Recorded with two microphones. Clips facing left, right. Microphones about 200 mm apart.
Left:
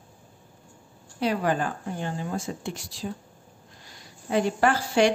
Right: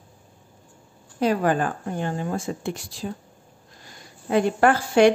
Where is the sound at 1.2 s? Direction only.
45° right (ahead or behind).